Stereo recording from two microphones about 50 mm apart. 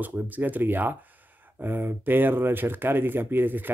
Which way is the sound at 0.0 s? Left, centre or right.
Right.